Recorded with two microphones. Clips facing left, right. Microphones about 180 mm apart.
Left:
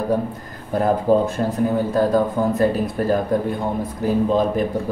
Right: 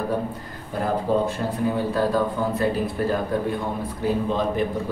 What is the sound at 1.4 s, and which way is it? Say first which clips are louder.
A man's voice: left 4 dB; 45° left (ahead or behind).